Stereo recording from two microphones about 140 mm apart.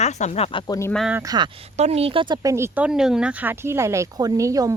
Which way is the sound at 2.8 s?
5° right (ahead or behind).